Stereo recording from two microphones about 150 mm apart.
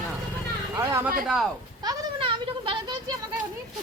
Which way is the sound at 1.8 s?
35° right (ahead or behind).